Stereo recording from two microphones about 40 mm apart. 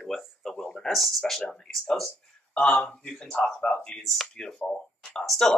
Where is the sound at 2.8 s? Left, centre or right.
Centre.